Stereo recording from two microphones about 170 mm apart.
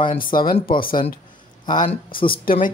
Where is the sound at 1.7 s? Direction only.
50° left (ahead or behind).